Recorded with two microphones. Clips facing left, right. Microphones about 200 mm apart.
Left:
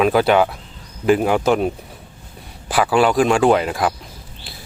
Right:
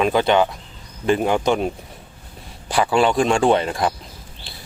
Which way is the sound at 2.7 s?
5° left (ahead or behind).